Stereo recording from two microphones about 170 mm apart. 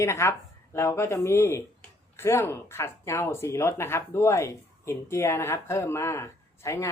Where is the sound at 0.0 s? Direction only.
15° left (ahead or behind).